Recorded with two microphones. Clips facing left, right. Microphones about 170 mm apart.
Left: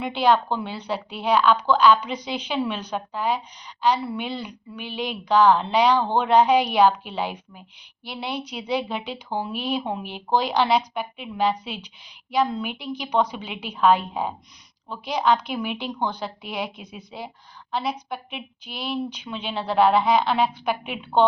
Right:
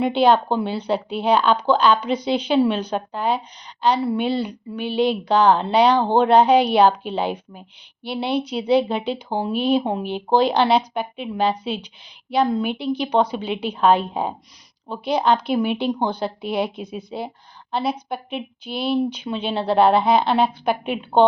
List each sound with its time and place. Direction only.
0.0 s speech: 30° right (ahead or behind)
17.9 s a woman's voice: centre (ahead or behind)
18.6 s speech: 30° right (ahead or behind)